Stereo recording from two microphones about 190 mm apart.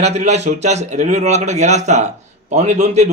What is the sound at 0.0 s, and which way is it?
Speech, 35° right (ahead or behind).